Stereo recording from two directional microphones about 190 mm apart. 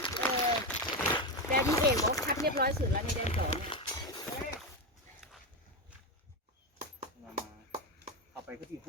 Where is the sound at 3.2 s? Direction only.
30° left (ahead or behind).